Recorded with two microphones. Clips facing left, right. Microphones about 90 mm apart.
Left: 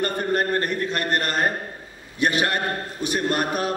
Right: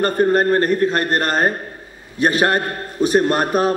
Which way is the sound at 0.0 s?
40° right (ahead or behind).